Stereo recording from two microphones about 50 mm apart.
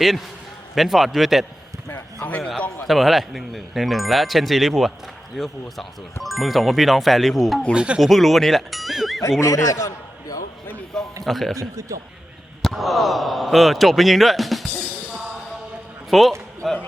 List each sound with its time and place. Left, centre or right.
0.8 s speech: centre
2.8 s speech: centre
7.7 s speech: right
8.0 s speech: centre
9.4 s a man's voice: left
11.2 s a man's voice: centre
11.8 s a man's voice: right
12.6 s speech: centre
16.0 s a man's voice: centre